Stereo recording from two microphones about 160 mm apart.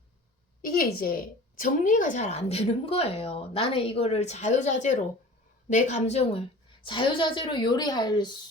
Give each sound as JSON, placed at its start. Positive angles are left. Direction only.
{"t": 0.6, "sound": "a woman's voice", "side_deg": 65}
{"t": 6.8, "sound": "a woman's voice", "side_deg": 30}